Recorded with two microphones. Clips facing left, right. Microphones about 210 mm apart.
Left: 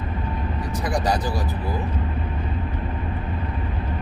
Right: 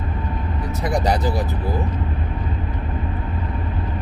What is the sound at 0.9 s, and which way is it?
Speech, 20° right (ahead or behind).